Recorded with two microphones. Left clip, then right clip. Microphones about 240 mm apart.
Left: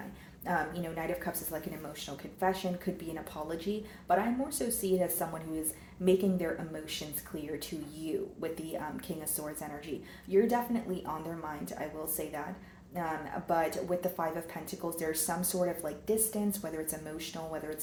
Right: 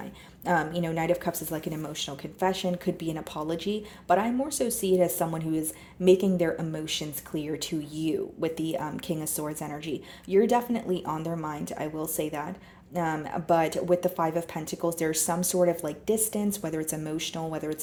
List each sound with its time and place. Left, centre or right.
0.4 s speech: right